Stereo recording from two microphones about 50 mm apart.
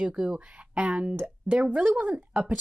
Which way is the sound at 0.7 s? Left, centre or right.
Right.